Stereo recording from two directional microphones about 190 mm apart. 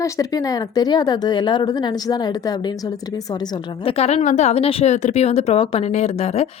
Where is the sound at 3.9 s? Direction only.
35° left (ahead or behind).